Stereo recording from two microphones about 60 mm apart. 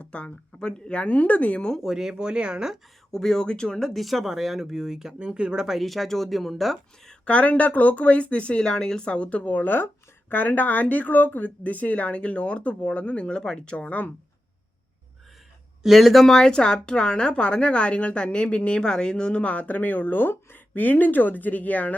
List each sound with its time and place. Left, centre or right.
0.0 s speech: centre
1.8 s speech: centre
3.1 s speech: centre
3.9 s speech: centre
5.6 s speech: centre
7.1 s speech: left
15.8 s speech: centre; by 21.9 s left